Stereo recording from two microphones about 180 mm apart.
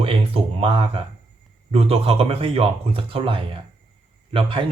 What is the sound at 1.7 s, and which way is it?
Speech, 30° right (ahead or behind).